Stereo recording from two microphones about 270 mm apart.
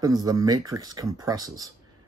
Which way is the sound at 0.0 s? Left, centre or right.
Centre.